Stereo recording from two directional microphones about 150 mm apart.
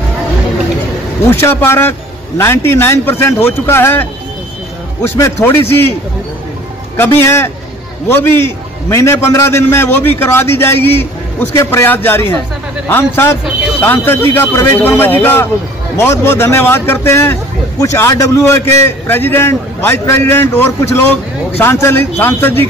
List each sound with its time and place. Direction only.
1.3 s a man's voice: 15° left (ahead or behind)
7.0 s a man's voice: 15° left (ahead or behind)